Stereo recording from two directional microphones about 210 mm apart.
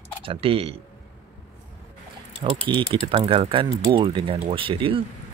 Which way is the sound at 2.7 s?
20° right (ahead or behind).